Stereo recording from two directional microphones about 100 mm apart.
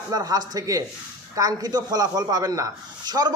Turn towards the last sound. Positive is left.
turn(degrees=-45)  # may be behind; listen again after turning